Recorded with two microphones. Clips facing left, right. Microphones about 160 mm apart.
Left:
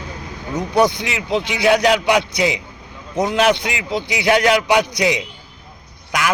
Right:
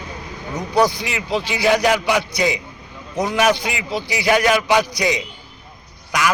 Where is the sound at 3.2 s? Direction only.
20° left (ahead or behind).